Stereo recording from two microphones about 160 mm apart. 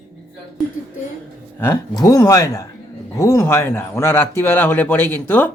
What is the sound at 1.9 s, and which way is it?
Speech, 25° left (ahead or behind).